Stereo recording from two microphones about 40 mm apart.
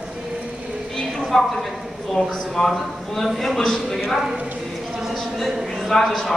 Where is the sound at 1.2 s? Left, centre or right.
Centre.